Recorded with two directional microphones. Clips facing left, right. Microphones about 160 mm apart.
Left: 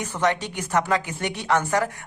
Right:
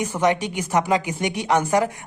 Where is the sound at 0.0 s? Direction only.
15° right (ahead or behind).